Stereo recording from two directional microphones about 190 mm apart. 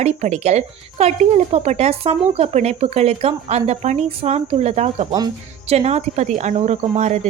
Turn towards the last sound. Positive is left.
turn(degrees=-35)  # may be behind; listen again after turning